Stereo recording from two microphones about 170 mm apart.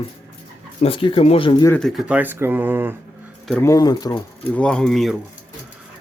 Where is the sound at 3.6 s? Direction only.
20° left (ahead or behind).